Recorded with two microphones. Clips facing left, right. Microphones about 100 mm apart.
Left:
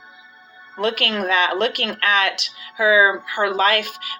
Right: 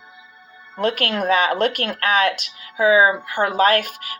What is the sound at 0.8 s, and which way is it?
Speech, 45° right (ahead or behind).